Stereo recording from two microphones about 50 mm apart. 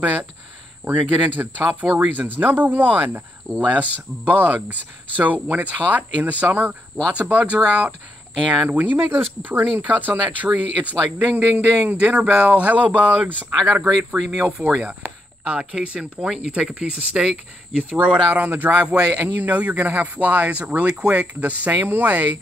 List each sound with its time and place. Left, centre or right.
0.8 s speech: right
8.6 s speech: right
12.0 s speech: right
18.3 s speech: right